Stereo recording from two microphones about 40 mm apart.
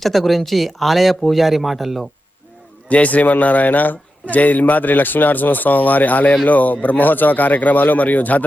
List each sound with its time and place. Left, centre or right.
0.0 s speech: centre
2.9 s speech: left